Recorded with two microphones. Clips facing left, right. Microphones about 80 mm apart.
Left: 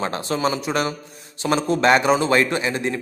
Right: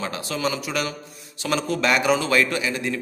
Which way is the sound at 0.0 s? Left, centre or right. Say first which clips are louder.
Left 4 dB; left.